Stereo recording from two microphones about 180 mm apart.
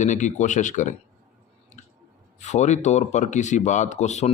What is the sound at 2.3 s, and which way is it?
Speech, 40° left (ahead or behind).